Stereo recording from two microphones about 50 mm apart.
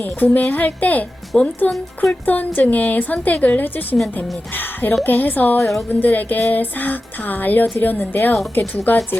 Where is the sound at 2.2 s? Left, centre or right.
Left.